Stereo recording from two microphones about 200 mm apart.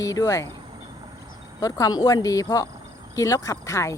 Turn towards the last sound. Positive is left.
turn(degrees=15)  # may be behind; listen again after turning